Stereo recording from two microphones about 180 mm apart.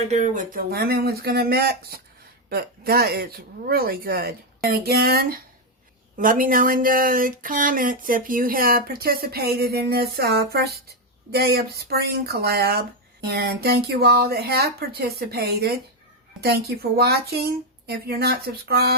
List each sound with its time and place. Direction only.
0.1 s speech: 45° right (ahead or behind); by 18.9 s 60° right (ahead or behind)